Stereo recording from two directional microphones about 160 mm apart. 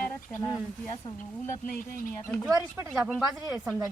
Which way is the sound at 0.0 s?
15° left (ahead or behind).